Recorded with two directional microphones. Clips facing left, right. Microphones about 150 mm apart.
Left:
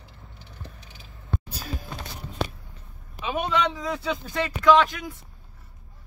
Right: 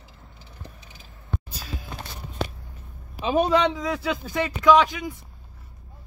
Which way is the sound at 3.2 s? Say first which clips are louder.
Right 5 dB; 35° right (ahead or behind).